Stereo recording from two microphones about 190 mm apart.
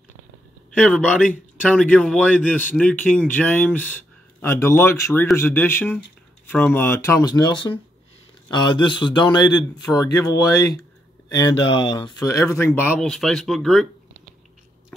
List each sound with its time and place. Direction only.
0.7 s a man's voice: 5° left (ahead or behind)